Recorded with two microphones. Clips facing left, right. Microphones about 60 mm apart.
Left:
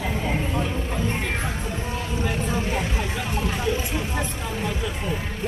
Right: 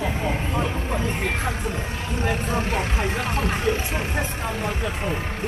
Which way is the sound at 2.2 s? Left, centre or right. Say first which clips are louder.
Right 3 dB; right.